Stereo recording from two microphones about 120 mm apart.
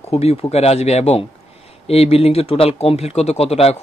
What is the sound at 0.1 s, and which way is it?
Speech, 60° left (ahead or behind).